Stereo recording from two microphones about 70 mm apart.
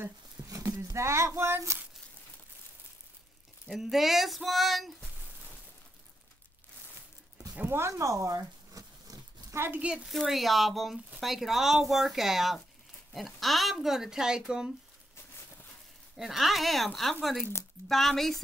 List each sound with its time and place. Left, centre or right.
0.5 s a sound: right
0.8 s speech: right
3.6 s speech: centre
7.5 s a sound: right
9.7 s a woman's voice: centre
10.0 s speech: centre
16.2 s speech: centre